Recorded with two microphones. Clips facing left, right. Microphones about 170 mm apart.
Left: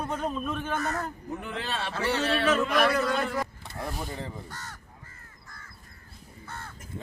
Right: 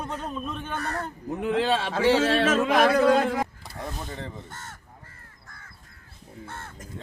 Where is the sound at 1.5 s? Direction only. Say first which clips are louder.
Right 12 dB; 90° right.